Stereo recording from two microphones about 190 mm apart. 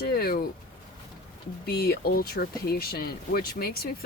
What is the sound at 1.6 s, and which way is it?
Speech, 55° left (ahead or behind).